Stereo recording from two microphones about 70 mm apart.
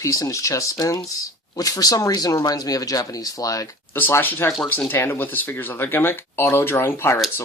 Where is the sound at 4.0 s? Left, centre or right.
Left.